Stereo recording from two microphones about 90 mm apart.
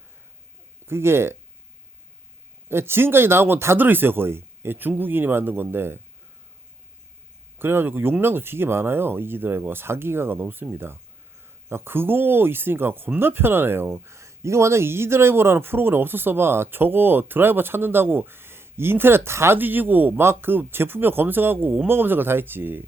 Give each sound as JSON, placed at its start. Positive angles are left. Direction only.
{"t": 0.9, "sound": "speech", "side_deg": -30}
{"t": 2.6, "sound": "speech", "side_deg": -25}
{"t": 7.6, "sound": "speech", "side_deg": -25}